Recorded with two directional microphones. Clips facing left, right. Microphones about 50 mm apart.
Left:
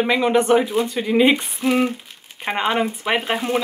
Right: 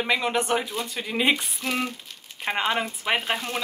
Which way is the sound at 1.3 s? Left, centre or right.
Left.